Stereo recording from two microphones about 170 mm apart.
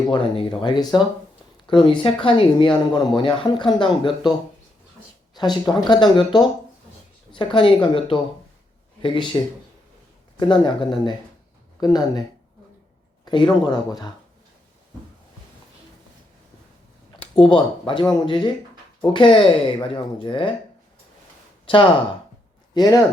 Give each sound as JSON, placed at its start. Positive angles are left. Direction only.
{"t": 0.1, "sound": "speech", "side_deg": 30}
{"t": 10.4, "sound": "speech", "side_deg": 30}
{"t": 13.2, "sound": "speech", "side_deg": 25}
{"t": 17.4, "sound": "speech", "side_deg": 30}
{"t": 21.7, "sound": "speech", "side_deg": 30}